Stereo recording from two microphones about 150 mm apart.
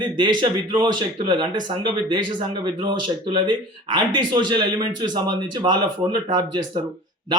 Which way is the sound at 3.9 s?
30° right (ahead or behind).